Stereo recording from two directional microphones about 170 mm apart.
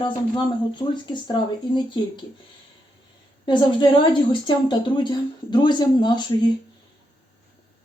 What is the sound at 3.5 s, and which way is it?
Speech, 30° left (ahead or behind).